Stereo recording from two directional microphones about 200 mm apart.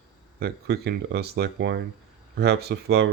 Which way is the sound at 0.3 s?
55° right (ahead or behind).